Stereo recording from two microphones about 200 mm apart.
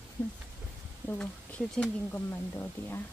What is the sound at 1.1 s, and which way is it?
Speech, 5° left (ahead or behind).